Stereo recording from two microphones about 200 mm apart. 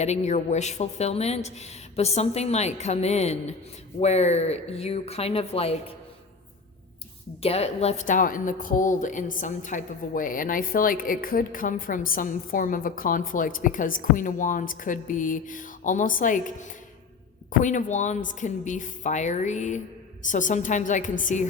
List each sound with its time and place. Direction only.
0.0 s a woman's voice: 35° left (ahead or behind)
7.4 s a woman's voice: 30° left (ahead or behind)